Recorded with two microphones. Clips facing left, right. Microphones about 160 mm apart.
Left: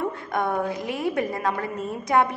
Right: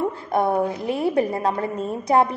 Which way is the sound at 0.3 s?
30° right (ahead or behind).